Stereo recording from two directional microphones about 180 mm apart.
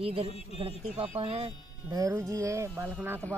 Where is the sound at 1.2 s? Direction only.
30° right (ahead or behind).